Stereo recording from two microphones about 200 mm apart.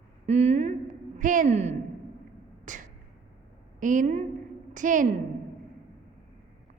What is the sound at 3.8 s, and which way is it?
A man's voice, 40° right (ahead or behind).